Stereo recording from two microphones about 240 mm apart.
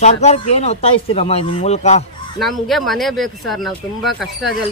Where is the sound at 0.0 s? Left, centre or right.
Left.